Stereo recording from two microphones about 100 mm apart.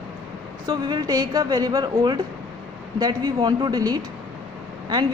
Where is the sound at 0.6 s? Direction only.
45° right (ahead or behind).